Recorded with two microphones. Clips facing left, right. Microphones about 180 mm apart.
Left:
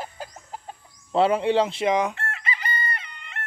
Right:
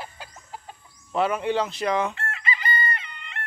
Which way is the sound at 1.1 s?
30° left (ahead or behind).